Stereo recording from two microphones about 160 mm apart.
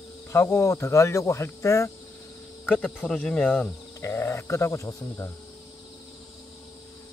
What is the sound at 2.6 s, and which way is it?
Speech, 10° left (ahead or behind).